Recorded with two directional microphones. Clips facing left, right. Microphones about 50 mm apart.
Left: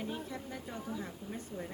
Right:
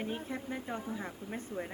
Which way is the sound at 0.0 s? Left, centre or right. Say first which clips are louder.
Right 2 dB; right.